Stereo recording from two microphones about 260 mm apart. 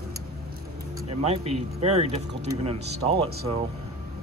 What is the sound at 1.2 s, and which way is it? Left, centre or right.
Speech, right.